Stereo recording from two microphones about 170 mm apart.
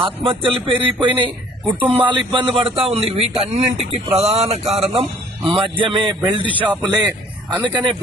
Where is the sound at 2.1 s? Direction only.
30° right (ahead or behind).